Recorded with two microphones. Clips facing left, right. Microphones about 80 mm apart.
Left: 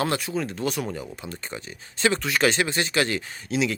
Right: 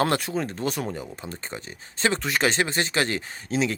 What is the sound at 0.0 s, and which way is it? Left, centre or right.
Speech, right.